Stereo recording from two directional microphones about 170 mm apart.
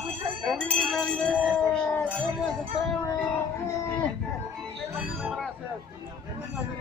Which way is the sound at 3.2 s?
15° left (ahead or behind).